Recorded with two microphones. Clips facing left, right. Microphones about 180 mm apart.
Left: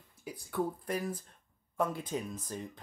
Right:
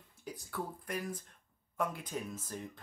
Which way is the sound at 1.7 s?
30° left (ahead or behind).